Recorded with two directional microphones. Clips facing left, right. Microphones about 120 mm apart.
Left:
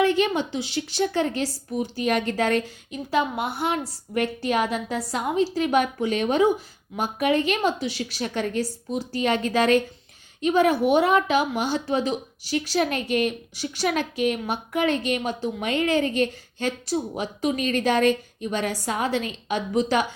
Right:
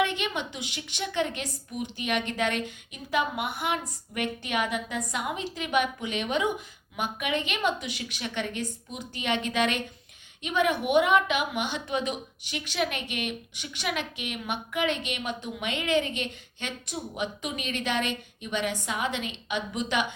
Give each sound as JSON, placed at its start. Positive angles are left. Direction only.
{"t": 0.0, "sound": "a woman's voice", "side_deg": 35}